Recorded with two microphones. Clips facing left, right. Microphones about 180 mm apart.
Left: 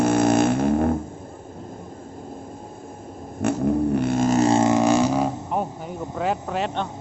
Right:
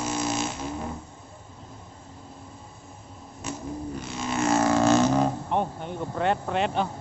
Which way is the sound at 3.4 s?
65° left (ahead or behind).